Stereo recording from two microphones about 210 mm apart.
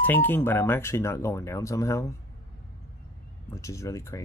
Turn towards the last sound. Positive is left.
turn(degrees=15)  # may be behind; listen again after turning